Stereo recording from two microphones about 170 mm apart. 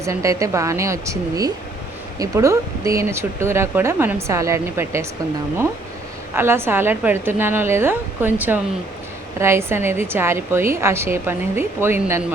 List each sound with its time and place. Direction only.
0.0 s speech: 20° right (ahead or behind)
6.3 s speech: 15° right (ahead or behind)